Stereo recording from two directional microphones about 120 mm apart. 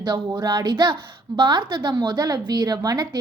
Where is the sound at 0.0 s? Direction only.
35° right (ahead or behind).